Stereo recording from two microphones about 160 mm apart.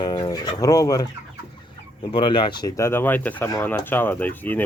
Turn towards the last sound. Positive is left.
turn(degrees=10)  # may be behind; listen again after turning